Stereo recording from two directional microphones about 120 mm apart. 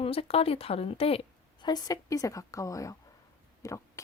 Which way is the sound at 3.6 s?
25° left (ahead or behind).